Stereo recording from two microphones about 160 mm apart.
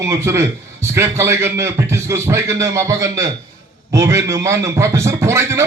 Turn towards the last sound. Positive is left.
turn(degrees=-15)  # may be behind; listen again after turning